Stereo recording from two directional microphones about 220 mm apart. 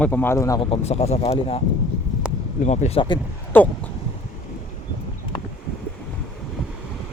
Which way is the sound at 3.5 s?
10° left (ahead or behind).